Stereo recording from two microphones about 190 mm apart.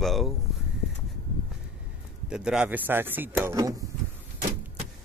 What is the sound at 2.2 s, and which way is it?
Speech, 5° right (ahead or behind).